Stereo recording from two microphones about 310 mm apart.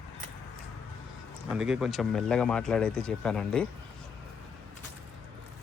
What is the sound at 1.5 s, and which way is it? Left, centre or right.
Speech, centre.